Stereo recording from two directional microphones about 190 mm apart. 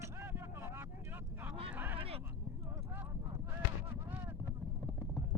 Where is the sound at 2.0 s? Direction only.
30° right (ahead or behind).